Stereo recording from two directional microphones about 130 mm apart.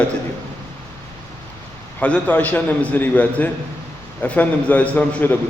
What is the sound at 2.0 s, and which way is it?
A man's voice, 10° left (ahead or behind).